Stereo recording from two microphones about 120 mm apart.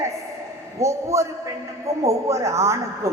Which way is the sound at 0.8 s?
25° right (ahead or behind).